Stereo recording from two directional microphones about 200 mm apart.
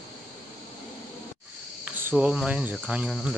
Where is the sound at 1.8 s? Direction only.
5° right (ahead or behind).